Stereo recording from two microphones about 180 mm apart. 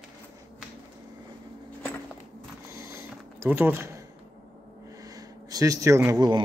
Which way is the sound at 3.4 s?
10° right (ahead or behind).